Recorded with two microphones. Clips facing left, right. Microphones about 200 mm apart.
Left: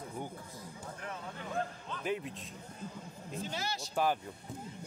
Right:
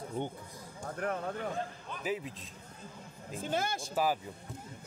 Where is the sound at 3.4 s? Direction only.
50° right (ahead or behind).